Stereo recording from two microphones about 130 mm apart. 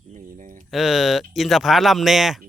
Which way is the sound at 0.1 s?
80° right.